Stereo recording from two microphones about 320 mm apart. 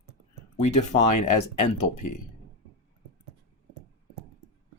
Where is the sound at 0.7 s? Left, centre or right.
Left.